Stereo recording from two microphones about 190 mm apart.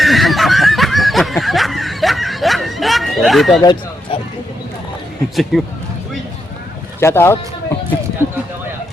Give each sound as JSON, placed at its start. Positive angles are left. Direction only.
{"t": 0.0, "sound": "snicker", "side_deg": 0}
{"t": 3.6, "sound": "hubbub", "side_deg": 25}
{"t": 5.4, "sound": "speech", "side_deg": 0}
{"t": 7.0, "sound": "speech", "side_deg": 15}